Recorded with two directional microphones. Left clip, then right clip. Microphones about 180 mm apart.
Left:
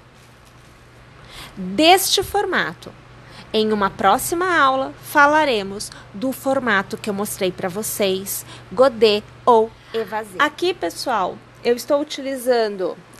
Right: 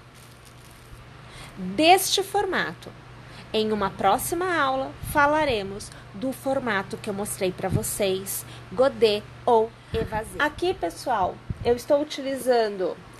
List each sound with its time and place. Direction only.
1.3 s a woman's voice: 25° left (ahead or behind)